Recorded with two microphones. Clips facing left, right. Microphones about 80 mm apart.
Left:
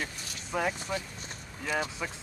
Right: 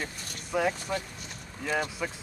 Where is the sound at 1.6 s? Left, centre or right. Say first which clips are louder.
Right 2 dB; centre.